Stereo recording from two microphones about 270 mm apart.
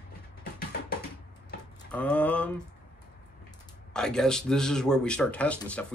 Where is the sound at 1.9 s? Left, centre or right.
Centre.